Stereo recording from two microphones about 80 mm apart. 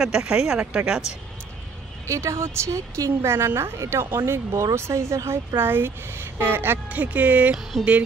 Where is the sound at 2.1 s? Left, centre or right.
Right; by 7.6 s centre.